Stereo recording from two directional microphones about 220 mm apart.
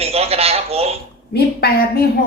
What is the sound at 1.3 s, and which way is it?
Speech, 45° left (ahead or behind).